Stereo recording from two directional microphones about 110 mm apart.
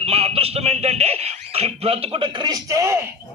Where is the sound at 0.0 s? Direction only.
65° right (ahead or behind); by 2.6 s 45° right (ahead or behind).